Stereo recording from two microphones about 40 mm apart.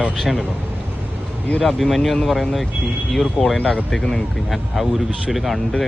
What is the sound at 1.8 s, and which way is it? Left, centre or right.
Speech, centre.